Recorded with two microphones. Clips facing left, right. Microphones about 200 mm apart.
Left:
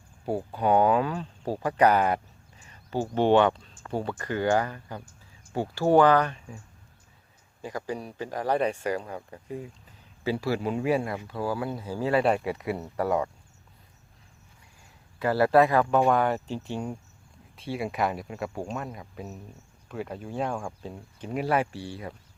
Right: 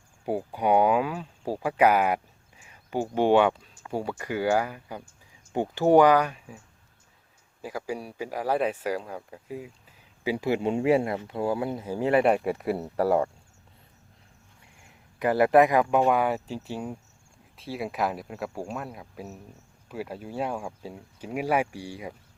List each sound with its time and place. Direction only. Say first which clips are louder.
0.3 s speech: even; 15° right (ahead or behind)
7.6 s speech: even; 5° right (ahead or behind)
10.2 s speech: right 2 dB; 15° right (ahead or behind)
12.3 s speech: right 2 dB; centre (ahead or behind)
12.7 s speech: right 3 dB; 30° right (ahead or behind)
14.8 s speech: right 2 dB; 20° right (ahead or behind)